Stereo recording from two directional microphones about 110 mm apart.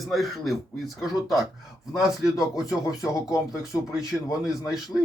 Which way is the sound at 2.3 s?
30° left (ahead or behind).